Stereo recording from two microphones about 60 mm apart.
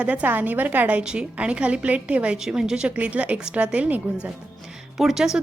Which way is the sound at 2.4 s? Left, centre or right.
Centre.